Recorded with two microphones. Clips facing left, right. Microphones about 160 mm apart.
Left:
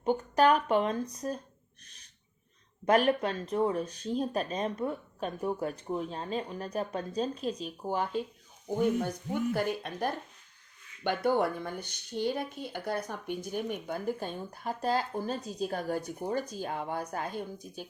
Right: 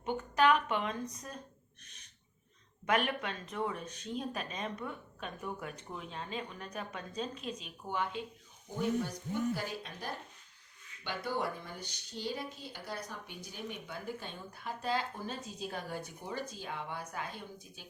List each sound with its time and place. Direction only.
0.0 s speech: 35° left (ahead or behind)
2.8 s speech: 35° left (ahead or behind)
9.5 s speech: 55° left (ahead or behind)